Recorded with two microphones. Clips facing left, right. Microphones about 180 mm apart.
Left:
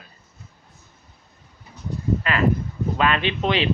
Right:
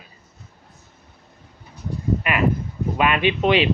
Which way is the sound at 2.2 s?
15° right (ahead or behind).